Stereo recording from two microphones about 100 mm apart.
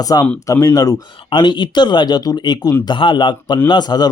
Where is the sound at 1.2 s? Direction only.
50° left (ahead or behind).